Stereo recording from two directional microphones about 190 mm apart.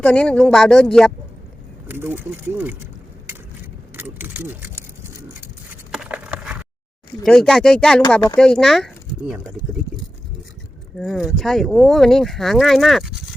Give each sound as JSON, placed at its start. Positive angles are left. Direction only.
{"t": 0.0, "sound": "speech", "side_deg": 5}
{"t": 1.9, "sound": "speech", "side_deg": -10}
{"t": 3.9, "sound": "speech", "side_deg": -10}
{"t": 5.9, "sound": "a sound", "side_deg": -5}
{"t": 7.2, "sound": "speech", "side_deg": 5}
{"t": 10.9, "sound": "speech", "side_deg": 0}